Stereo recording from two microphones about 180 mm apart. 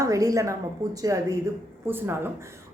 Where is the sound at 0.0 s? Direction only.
20° right (ahead or behind).